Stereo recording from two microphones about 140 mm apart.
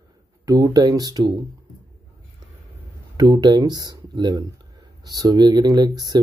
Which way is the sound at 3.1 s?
30° right (ahead or behind).